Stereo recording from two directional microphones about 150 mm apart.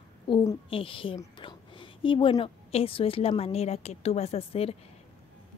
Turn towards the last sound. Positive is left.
turn(degrees=40)  # may be behind; listen again after turning